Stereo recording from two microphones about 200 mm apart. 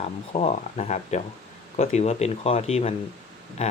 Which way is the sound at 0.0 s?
35° left (ahead or behind).